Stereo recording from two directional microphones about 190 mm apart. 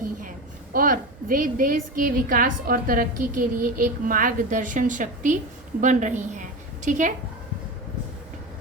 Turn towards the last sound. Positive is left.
turn(degrees=-40)  # may be behind; listen again after turning